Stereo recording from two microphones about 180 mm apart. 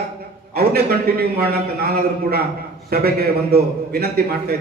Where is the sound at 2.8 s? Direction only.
60° right (ahead or behind).